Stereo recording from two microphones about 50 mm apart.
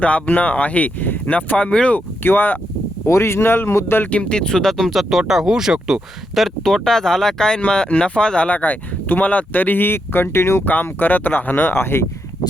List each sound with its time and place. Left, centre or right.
0.3 s speech: left
2.2 s speech: left
3.1 s speech: left
4.0 s speech: left; by 6.5 s centre
6.7 s speech: centre; by 10.6 s left
10.7 s speech: left